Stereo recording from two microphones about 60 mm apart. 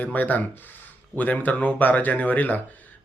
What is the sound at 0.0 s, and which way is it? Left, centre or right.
Speech, left.